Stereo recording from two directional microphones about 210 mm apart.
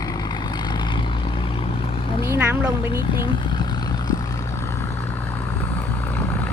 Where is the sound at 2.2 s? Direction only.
15° right (ahead or behind).